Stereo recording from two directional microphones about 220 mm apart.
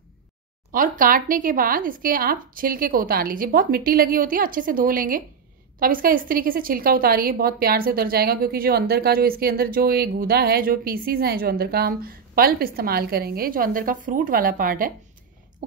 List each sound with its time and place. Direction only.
0.7 s a woman's voice: 40° right (ahead or behind)